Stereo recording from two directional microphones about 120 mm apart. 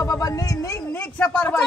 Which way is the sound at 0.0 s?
30° left (ahead or behind).